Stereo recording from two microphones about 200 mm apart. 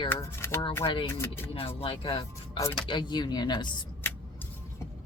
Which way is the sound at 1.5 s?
30° left (ahead or behind).